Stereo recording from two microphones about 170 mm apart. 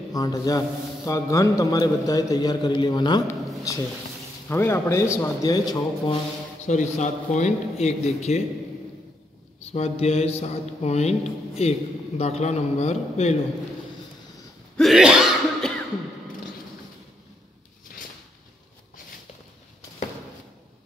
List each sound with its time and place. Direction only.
0.1 s a man's voice: 20° left (ahead or behind)
6.6 s a man's voice: 45° left (ahead or behind)
9.6 s a man's voice: 35° left (ahead or behind)
14.8 s cough: centre (ahead or behind)